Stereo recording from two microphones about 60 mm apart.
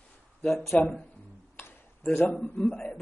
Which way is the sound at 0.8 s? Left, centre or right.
Centre.